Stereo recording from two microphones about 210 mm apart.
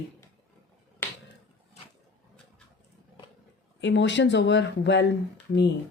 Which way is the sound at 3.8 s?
60° left (ahead or behind).